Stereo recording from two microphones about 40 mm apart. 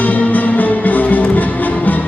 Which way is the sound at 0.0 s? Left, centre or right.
Left.